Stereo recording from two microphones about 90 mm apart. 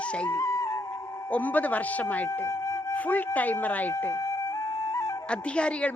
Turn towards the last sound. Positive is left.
turn(degrees=15)  # may be behind; listen again after turning